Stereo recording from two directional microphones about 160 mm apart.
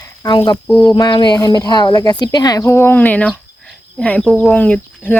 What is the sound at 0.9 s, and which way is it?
Speech, 25° left (ahead or behind).